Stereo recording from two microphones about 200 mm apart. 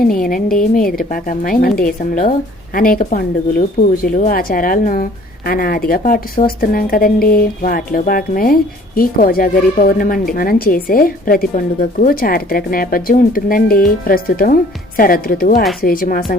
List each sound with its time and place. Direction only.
0.3 s speech: 45° left (ahead or behind)